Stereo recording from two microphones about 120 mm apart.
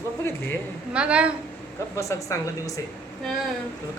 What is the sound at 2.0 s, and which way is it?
Speech, 25° left (ahead or behind).